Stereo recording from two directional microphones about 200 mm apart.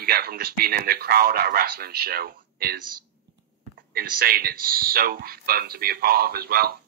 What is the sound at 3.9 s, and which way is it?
A man's voice, 50° right (ahead or behind).